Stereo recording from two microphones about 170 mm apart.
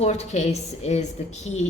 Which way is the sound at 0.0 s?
40° left (ahead or behind).